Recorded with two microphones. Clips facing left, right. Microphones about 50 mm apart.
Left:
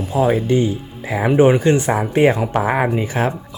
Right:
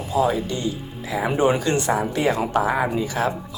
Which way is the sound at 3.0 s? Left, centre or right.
Left.